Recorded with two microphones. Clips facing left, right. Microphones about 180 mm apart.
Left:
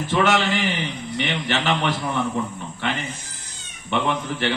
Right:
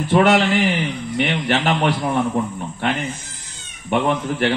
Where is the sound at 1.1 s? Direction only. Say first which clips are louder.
Right 5 dB; 45° right (ahead or behind).